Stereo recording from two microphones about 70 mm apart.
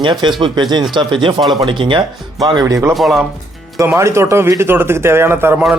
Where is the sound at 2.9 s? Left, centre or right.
Centre.